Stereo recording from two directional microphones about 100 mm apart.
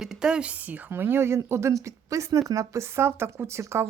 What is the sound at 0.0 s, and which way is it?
Speech, 5° right (ahead or behind).